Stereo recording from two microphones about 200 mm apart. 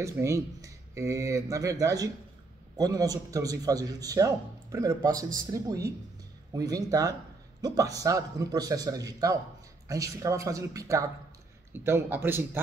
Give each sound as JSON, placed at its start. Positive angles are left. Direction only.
{"t": 0.0, "sound": "a man's voice", "side_deg": -15}